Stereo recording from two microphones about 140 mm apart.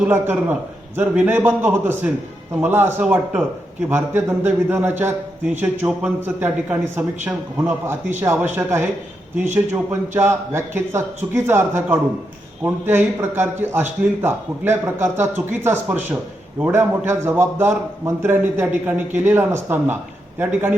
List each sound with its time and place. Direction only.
0.0 s a man's voice: 10° right (ahead or behind)